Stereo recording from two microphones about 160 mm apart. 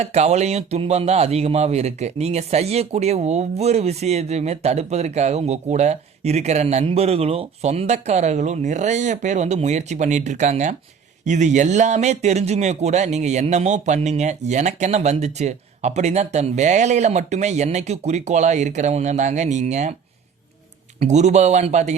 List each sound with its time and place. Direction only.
0.0 s speech: 45° right (ahead or behind)
21.0 s speech: 45° right (ahead or behind)